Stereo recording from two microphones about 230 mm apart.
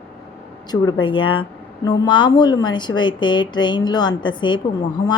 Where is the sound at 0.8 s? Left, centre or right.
Left.